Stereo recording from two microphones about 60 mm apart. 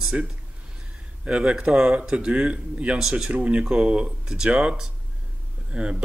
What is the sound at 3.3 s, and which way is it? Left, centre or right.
Speech, right.